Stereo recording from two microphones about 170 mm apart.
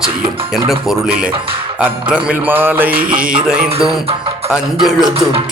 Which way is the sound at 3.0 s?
55° right (ahead or behind).